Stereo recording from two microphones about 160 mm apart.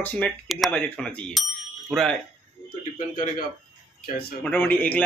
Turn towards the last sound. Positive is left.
turn(degrees=10)  # may be behind; listen again after turning